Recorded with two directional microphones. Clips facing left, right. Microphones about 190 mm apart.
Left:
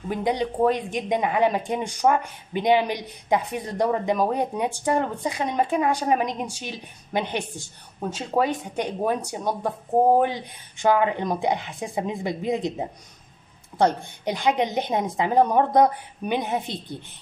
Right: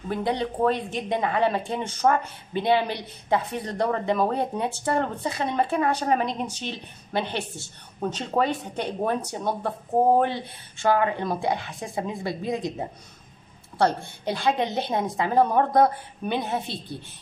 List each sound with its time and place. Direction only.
0.1 s speech: 15° left (ahead or behind)